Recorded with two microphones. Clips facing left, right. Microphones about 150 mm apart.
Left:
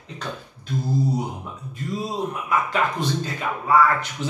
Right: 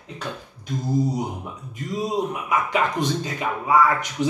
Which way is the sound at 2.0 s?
15° right (ahead or behind).